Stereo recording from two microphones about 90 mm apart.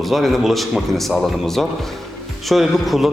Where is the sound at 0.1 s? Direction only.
Centre (ahead or behind).